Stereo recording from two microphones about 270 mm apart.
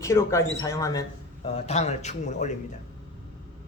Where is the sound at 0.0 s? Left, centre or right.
Centre.